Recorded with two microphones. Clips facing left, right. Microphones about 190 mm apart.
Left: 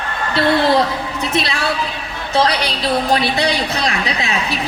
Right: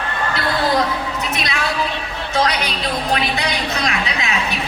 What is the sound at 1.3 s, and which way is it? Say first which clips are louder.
A woman's voice: left 6 dB; 30° left (ahead or behind).